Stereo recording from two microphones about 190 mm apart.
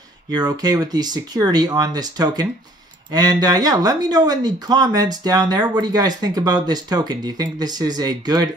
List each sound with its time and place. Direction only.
0.3 s speech: 20° right (ahead or behind)